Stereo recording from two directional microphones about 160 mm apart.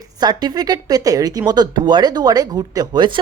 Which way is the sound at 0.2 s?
25° right (ahead or behind).